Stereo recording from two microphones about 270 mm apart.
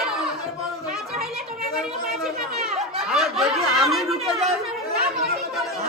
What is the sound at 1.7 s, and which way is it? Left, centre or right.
Chatter, centre.